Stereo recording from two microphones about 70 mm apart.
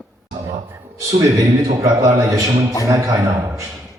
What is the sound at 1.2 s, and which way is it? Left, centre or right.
A man's voice, right.